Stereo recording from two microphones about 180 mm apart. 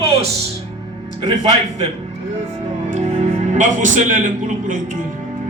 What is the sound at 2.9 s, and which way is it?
A man's voice, 40° right (ahead or behind).